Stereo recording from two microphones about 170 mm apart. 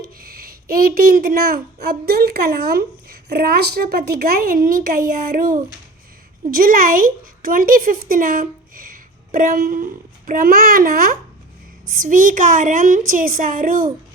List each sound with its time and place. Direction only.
0.0 s a woman's voice: 60° right (ahead or behind)